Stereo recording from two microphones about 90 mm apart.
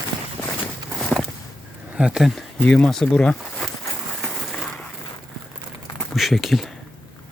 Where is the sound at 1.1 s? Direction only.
5° left (ahead or behind).